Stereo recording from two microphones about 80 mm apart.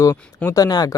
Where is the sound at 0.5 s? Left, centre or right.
Left.